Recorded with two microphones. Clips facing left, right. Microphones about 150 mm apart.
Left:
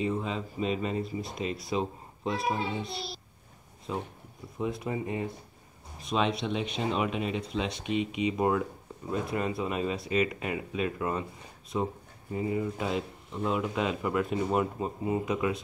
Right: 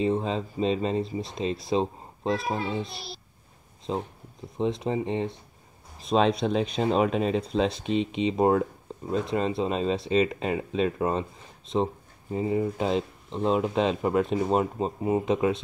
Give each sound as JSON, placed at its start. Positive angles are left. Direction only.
{"t": 0.0, "sound": "speech", "side_deg": -30}
{"t": 3.9, "sound": "speech", "side_deg": -30}